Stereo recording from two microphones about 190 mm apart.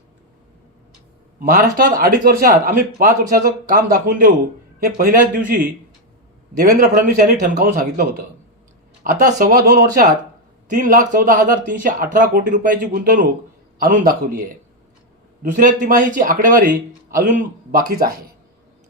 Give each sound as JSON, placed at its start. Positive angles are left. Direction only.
{"t": 1.4, "sound": "speech", "side_deg": -50}
{"t": 9.1, "sound": "speech", "side_deg": -45}
{"t": 15.4, "sound": "speech", "side_deg": -45}